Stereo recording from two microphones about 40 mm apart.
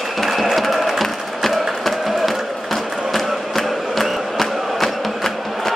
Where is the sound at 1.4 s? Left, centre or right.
Centre.